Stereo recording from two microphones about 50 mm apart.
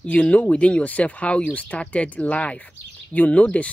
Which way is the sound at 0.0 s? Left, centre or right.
Left.